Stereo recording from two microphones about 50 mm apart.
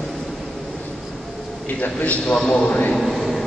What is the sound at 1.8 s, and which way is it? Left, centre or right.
Speech, left.